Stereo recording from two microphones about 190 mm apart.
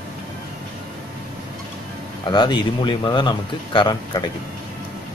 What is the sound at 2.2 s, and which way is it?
Speech, 25° left (ahead or behind).